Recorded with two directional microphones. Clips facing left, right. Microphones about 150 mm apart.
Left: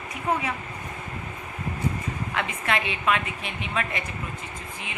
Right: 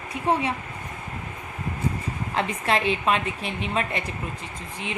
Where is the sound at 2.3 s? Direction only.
30° right (ahead or behind).